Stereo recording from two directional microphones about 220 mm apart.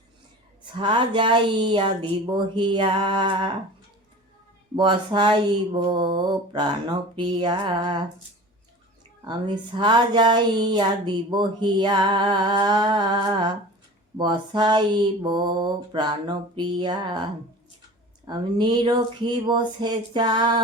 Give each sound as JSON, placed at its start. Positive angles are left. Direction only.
{"t": 0.7, "sound": "speech", "side_deg": -20}
{"t": 4.7, "sound": "speech", "side_deg": -20}
{"t": 9.2, "sound": "speech", "side_deg": -20}
{"t": 18.3, "sound": "speech", "side_deg": -20}